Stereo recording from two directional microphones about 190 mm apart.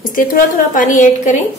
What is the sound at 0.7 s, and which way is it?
Speech, 45° left (ahead or behind).